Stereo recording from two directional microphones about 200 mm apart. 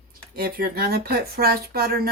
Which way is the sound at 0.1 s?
45° right (ahead or behind).